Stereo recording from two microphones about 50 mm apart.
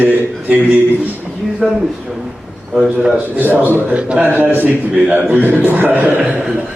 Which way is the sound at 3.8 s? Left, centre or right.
Right.